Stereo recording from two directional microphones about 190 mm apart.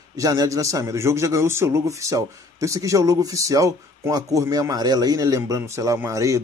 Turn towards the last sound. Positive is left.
turn(degrees=-15)  # may be behind; listen again after turning